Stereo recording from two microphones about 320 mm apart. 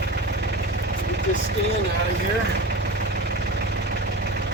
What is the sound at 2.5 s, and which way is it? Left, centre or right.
Vehicle, right.